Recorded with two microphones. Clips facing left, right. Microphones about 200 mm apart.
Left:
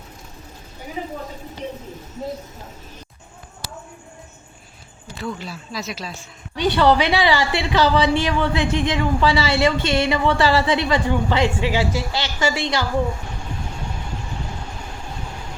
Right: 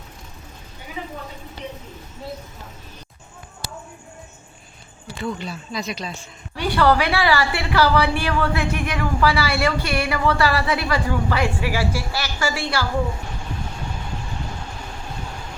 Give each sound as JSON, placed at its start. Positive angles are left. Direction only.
{"t": 1.0, "sound": "a woman's voice", "side_deg": 35}
{"t": 5.1, "sound": "speech", "side_deg": 0}
{"t": 6.6, "sound": "a woman's voice", "side_deg": 20}